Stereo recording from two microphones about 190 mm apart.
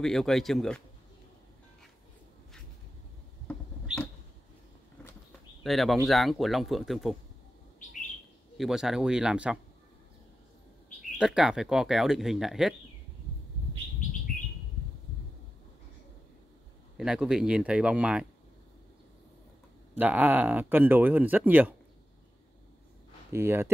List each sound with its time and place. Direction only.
0.0 s speech: centre (ahead or behind)
5.6 s speech: centre (ahead or behind)
8.5 s speech: centre (ahead or behind)
11.1 s speech: 5° right (ahead or behind)
16.9 s speech: 5° right (ahead or behind)
20.0 s speech: 10° right (ahead or behind)
23.3 s speech: 15° right (ahead or behind)